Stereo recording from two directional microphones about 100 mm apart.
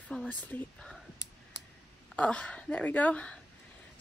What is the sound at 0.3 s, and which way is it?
Speech, 15° left (ahead or behind).